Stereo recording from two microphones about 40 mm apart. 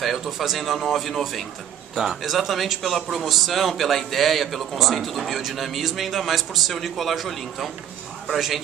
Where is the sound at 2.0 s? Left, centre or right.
Centre.